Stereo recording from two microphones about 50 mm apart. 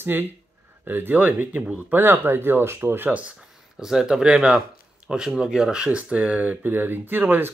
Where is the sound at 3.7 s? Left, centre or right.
Centre.